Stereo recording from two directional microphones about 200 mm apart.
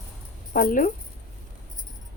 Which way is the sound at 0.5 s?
45° left (ahead or behind).